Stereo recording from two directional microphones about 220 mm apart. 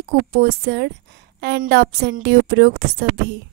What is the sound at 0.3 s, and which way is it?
A woman's voice, 50° right (ahead or behind).